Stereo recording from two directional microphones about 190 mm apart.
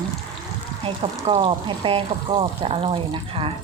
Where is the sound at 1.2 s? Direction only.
30° right (ahead or behind).